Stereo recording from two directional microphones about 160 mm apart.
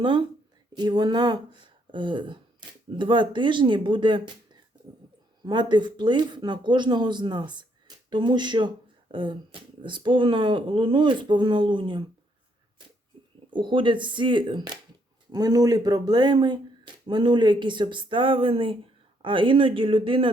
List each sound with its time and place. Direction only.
0.0 s speech: 30° right (ahead or behind)
5.5 s speech: 30° right (ahead or behind)
13.5 s speech: 30° right (ahead or behind)